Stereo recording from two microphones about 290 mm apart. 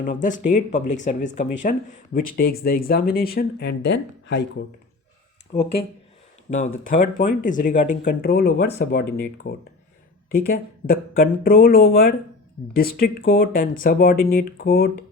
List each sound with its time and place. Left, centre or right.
0.0 s speech: left
5.5 s speech: left